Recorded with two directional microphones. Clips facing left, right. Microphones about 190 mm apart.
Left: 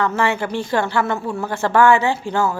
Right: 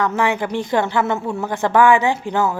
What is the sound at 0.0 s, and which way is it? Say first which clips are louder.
Speech: even; 15° right (ahead or behind).